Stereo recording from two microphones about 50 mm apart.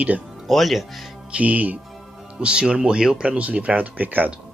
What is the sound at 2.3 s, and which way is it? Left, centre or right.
Speech, centre.